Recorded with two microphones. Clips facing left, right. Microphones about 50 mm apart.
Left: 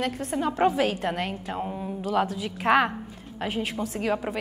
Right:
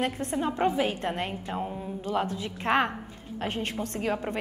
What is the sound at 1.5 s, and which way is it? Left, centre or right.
A woman's voice, centre.